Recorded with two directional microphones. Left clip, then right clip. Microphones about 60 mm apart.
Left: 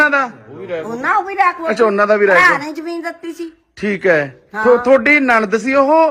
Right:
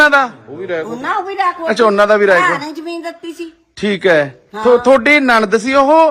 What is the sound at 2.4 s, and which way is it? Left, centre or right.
A woman's voice, right.